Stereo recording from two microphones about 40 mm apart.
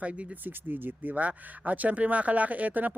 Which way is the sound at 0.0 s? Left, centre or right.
Right.